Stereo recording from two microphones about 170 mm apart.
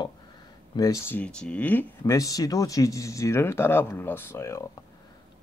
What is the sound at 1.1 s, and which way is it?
Speech, 5° left (ahead or behind).